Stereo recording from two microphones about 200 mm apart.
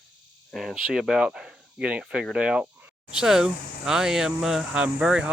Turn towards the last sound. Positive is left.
turn(degrees=-5)  # may be behind; listen again after turning